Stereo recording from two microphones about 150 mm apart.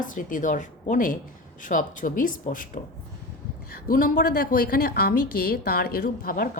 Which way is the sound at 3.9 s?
70° left (ahead or behind).